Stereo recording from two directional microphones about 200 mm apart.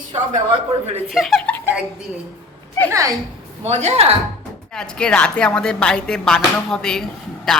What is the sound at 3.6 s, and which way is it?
Speech, 35° right (ahead or behind).